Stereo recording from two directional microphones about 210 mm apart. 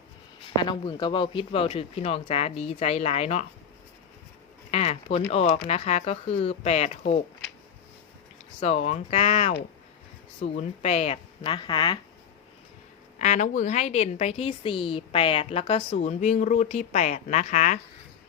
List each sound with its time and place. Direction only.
0.6 s speech: 20° left (ahead or behind)
4.7 s a woman's voice: 30° left (ahead or behind)
8.6 s a woman's voice: 30° left (ahead or behind)
13.1 s a woman's voice: 35° left (ahead or behind)